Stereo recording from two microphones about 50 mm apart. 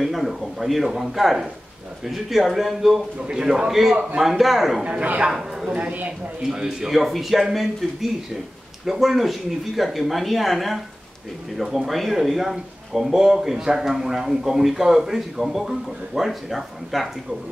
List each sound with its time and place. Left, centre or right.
0.0 s speech: centre
3.2 s speech: centre
4.8 s speech: right
6.5 s speech: centre
6.9 s speech: centre